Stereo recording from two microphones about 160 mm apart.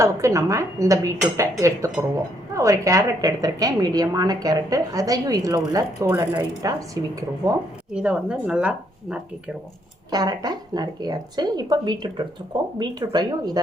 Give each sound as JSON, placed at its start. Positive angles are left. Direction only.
{"t": 0.0, "sound": "a woman's voice", "side_deg": -20}
{"t": 7.9, "sound": "a woman's voice", "side_deg": -5}
{"t": 10.1, "sound": "a woman's voice", "side_deg": -25}